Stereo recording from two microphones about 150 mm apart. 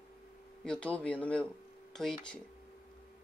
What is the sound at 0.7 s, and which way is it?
A woman's voice, 10° left (ahead or behind).